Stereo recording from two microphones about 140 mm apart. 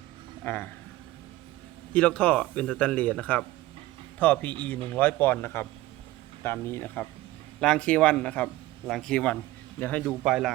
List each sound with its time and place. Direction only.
0.4 s a man's voice: 15° left (ahead or behind)
1.9 s a man's voice: 10° left (ahead or behind)
10.2 s speech: centre (ahead or behind)